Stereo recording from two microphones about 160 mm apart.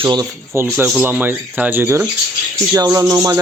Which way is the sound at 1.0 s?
10° right (ahead or behind).